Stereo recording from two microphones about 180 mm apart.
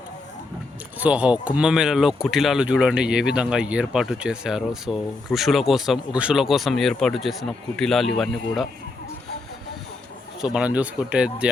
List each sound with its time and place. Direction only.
0.9 s speech: 5° right (ahead or behind)
10.4 s speech: 5° right (ahead or behind)